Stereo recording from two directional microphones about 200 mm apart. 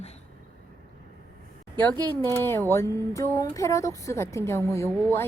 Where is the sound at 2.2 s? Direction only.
10° left (ahead or behind).